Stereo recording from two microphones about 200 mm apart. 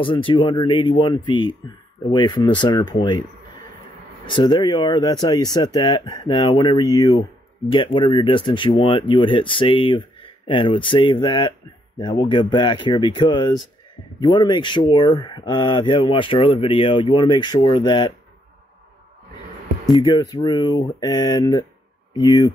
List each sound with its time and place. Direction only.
0.0 s speech: 25° left (ahead or behind)
4.3 s speech: 25° left (ahead or behind)
19.9 s speech: 20° left (ahead or behind)